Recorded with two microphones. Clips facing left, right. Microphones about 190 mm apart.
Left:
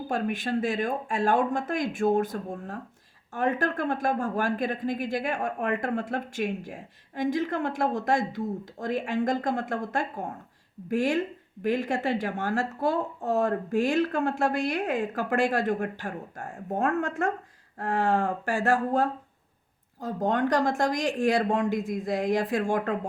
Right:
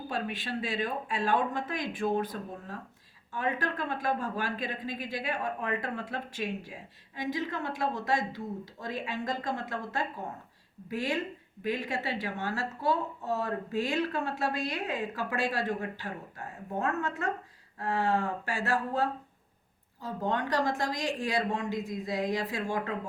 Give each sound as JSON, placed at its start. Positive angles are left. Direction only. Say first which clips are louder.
{"t": 0.1, "sound": "speech", "louder": "left 7 dB", "side_deg": 45}